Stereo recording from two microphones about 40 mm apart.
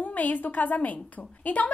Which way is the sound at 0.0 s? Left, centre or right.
Left.